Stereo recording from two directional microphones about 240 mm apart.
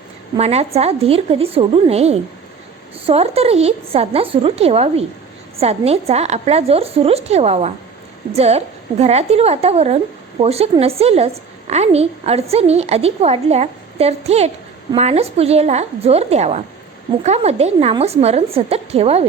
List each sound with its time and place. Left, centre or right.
0.3 s a woman's voice: right